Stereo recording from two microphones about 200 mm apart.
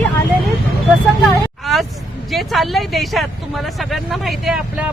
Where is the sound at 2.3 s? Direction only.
Centre (ahead or behind).